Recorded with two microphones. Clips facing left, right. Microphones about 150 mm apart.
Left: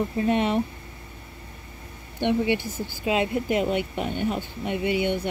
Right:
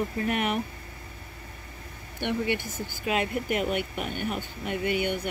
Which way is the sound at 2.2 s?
20° left (ahead or behind).